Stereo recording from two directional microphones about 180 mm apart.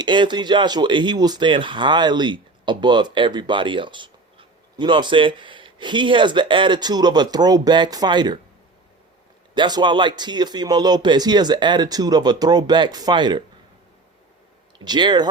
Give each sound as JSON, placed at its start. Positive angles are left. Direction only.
{"t": 0.0, "sound": "speech", "side_deg": -25}
{"t": 9.6, "sound": "speech", "side_deg": -25}
{"t": 14.8, "sound": "speech", "side_deg": -25}